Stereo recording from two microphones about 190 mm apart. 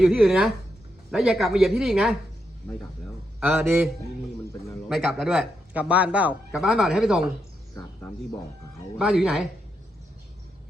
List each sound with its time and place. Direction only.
0.0 s speech: 5° right (ahead or behind)
3.4 s a man's voice: 10° right (ahead or behind)
4.9 s speech: centre (ahead or behind)
7.8 s speech: 20° left (ahead or behind)
9.0 s speech: 5° right (ahead or behind)